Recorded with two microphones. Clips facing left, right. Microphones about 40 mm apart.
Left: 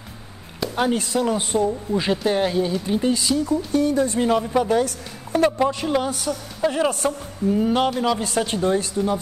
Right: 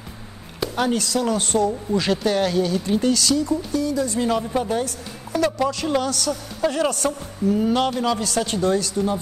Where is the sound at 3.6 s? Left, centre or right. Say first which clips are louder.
Left 3 dB; left.